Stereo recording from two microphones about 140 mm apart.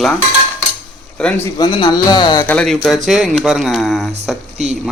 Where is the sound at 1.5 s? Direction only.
30° left (ahead or behind).